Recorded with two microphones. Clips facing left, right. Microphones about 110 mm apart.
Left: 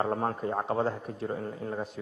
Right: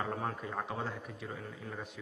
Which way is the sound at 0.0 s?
40° left (ahead or behind).